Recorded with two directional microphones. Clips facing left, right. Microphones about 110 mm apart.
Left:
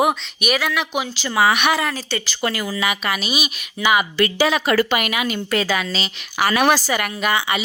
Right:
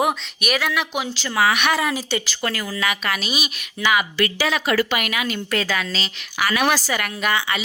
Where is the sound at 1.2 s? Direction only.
15° left (ahead or behind).